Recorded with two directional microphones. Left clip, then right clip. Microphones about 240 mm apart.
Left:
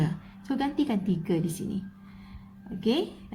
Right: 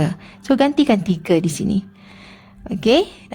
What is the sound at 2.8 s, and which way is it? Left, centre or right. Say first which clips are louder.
Speech: right 13 dB; right.